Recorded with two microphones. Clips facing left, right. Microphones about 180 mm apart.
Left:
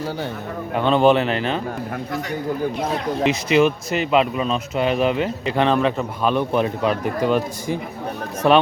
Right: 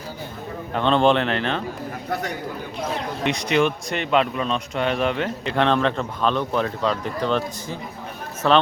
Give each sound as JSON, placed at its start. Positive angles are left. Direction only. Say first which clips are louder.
{"t": 0.7, "sound": "a man's voice", "louder": "left 2 dB", "side_deg": 5}
{"t": 3.2, "sound": "a man's voice", "louder": "left 3 dB", "side_deg": 5}